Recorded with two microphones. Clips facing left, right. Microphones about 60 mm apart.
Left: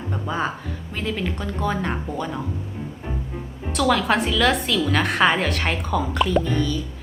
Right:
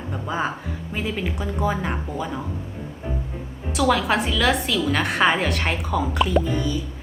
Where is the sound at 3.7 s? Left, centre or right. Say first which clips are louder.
Even; centre.